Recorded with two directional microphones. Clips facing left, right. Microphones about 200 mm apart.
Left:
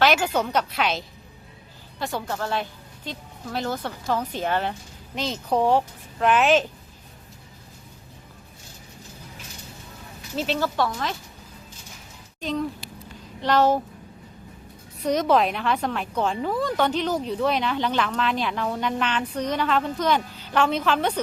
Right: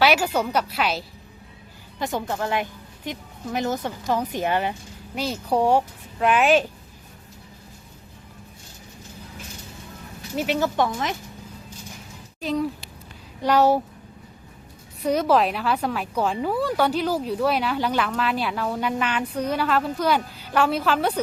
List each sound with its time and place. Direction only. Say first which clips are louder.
0.0 s a woman's voice: right 1 dB; 10° right (ahead or behind)
2.0 s a woman's voice: right 2 dB; 15° right (ahead or behind)
10.3 s a woman's voice: right 2 dB; 15° right (ahead or behind)
12.4 s a woman's voice: right 2 dB; 5° right (ahead or behind)
15.0 s a woman's voice: right 1 dB; 5° right (ahead or behind)